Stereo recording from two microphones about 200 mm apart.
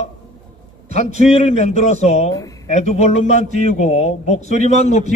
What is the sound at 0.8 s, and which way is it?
A man's voice, 35° left (ahead or behind).